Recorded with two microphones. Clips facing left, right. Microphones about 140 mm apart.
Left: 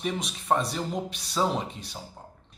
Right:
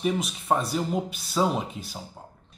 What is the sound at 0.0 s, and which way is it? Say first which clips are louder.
Speech: right 4 dB; 5° right (ahead or behind).